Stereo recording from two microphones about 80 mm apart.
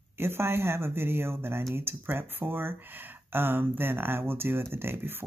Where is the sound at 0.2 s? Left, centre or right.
Right.